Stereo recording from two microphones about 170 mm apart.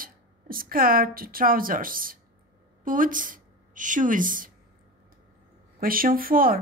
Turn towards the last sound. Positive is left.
turn(degrees=-55)  # may be behind; listen again after turning